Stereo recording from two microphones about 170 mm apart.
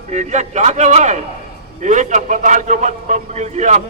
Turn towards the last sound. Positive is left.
turn(degrees=-45)  # may be behind; listen again after turning